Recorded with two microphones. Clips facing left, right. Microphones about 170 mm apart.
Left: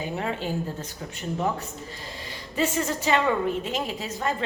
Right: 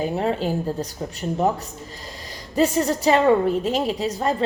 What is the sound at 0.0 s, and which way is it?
A woman's voice, 35° right (ahead or behind).